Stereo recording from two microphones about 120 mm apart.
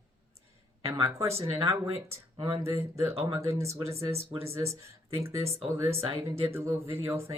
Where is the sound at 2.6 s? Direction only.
25° right (ahead or behind).